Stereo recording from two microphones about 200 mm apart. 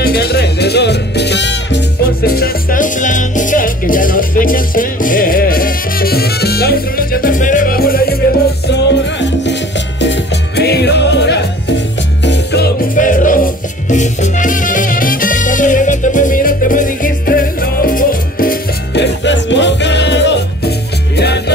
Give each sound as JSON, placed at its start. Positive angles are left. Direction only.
{"t": 0.0, "sound": "music", "side_deg": 55}
{"t": 2.2, "sound": "music", "side_deg": 50}
{"t": 8.6, "sound": "music", "side_deg": 60}
{"t": 19.2, "sound": "music", "side_deg": 65}